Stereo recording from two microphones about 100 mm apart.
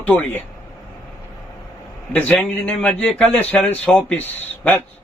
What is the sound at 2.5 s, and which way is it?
Speech, 15° left (ahead or behind).